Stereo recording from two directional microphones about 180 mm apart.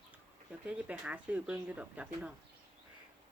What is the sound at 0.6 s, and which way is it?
Speech, 10° right (ahead or behind).